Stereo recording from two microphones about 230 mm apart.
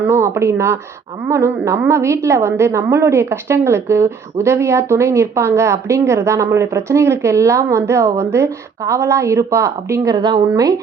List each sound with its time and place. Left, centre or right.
0.0 s a woman's voice: centre